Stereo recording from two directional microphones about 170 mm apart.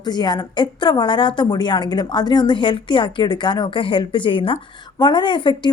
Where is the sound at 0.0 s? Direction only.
25° left (ahead or behind).